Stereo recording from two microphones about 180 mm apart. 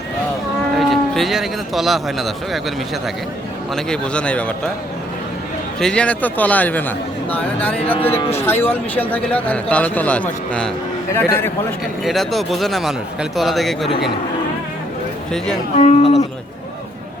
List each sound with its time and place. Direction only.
0.8 s speech: centre (ahead or behind)
3.8 s speech: 5° left (ahead or behind)
5.8 s speech: 5° left (ahead or behind)
12.0 s speech: centre (ahead or behind)
15.8 s speech: 35° left (ahead or behind)